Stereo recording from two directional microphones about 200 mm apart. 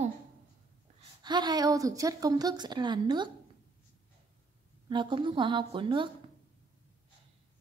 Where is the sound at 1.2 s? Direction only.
20° right (ahead or behind).